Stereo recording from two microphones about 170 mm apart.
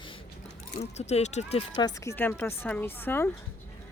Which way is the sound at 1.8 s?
20° left (ahead or behind).